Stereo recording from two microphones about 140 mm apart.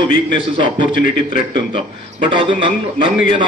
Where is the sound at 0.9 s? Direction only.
80° left.